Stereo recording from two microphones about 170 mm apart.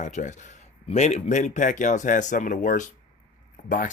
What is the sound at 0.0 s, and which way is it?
Speech, 45° left (ahead or behind).